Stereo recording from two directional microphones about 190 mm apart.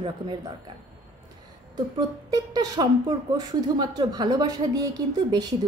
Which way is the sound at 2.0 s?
20° right (ahead or behind).